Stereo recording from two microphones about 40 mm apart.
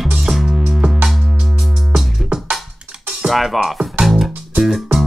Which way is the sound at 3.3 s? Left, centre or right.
Centre.